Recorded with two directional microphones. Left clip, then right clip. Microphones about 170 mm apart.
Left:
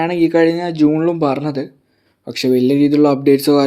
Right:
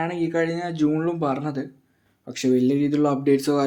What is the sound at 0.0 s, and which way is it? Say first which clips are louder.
Speech: left 10 dB; 45° left (ahead or behind).